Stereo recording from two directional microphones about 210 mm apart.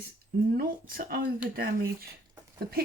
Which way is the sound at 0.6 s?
45° right (ahead or behind).